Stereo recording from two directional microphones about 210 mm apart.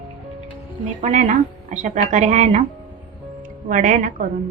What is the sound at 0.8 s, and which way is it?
A woman's voice, 35° right (ahead or behind).